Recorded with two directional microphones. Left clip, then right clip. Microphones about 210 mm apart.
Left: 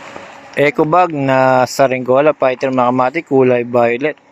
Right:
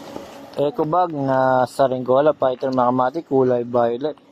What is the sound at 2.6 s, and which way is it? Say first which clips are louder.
Speech: left 5 dB; 20° left (ahead or behind).